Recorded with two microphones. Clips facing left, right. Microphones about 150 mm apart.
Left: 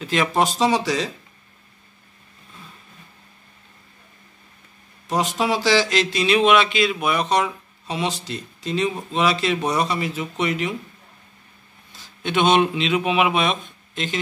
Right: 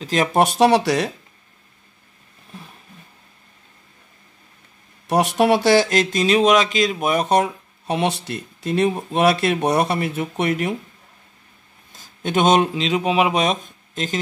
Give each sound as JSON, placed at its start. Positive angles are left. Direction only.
{"t": 0.0, "sound": "speech", "side_deg": -40}
{"t": 0.4, "sound": "speech", "side_deg": -65}
{"t": 5.0, "sound": "speech", "side_deg": -65}
{"t": 11.9, "sound": "speech", "side_deg": -45}